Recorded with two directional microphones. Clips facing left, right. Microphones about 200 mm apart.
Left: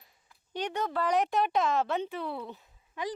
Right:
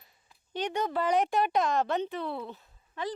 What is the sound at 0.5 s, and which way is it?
A woman's voice, 5° left (ahead or behind).